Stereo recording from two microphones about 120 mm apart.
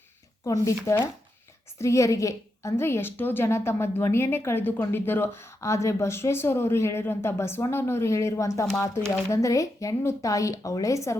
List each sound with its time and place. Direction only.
0.4 s a woman's voice: 25° left (ahead or behind)